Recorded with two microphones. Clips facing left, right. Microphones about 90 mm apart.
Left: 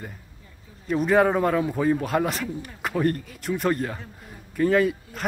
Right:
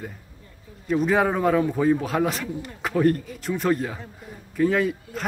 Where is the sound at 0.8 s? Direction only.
Centre (ahead or behind).